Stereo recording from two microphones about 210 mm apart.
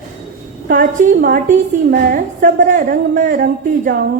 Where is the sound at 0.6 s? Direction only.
45° right (ahead or behind).